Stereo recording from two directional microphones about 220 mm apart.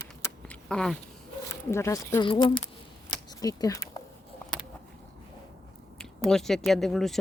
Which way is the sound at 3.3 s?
15° left (ahead or behind).